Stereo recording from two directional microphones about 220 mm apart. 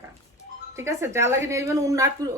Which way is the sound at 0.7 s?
10° right (ahead or behind).